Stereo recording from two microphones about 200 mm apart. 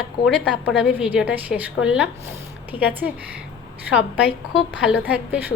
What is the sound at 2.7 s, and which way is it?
Speech, 25° left (ahead or behind).